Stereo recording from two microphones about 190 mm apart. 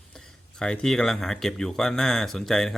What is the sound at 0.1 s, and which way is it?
Speech, 5° left (ahead or behind).